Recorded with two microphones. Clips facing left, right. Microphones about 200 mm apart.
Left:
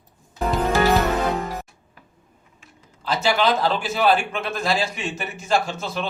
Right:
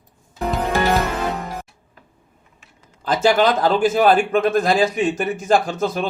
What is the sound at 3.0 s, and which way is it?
A man's voice, 50° right (ahead or behind).